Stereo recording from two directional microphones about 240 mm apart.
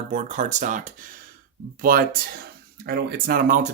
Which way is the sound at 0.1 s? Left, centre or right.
Right.